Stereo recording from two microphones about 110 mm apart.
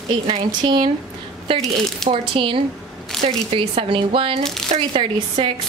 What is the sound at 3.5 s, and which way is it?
Speech, 55° right (ahead or behind).